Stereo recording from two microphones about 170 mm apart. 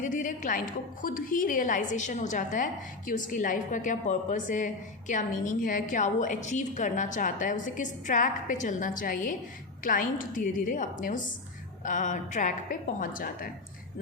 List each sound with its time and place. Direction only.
0.0 s a woman's voice: 50° left (ahead or behind)